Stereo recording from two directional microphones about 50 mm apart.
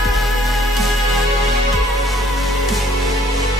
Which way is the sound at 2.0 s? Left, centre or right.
Centre.